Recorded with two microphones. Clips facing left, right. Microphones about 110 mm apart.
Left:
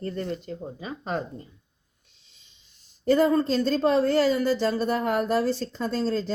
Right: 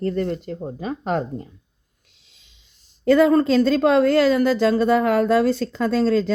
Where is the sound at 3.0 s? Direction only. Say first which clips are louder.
Right 5 dB; 80° right.